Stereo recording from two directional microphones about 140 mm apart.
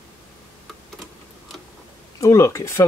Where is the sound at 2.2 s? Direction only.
20° left (ahead or behind).